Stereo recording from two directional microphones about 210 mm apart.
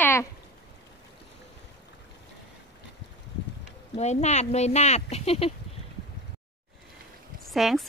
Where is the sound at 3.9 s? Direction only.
30° left (ahead or behind).